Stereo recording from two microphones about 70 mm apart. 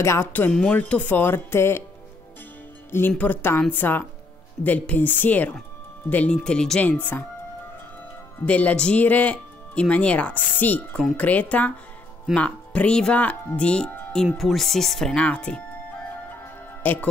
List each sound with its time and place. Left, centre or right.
0.0 s speech: left
0.5 s speech: centre; by 1.8 s left
2.9 s speech: left
6.3 s speech: centre
6.8 s speech: left
8.5 s speech: left; by 15.2 s centre
15.2 s speech: centre
16.8 s speech: left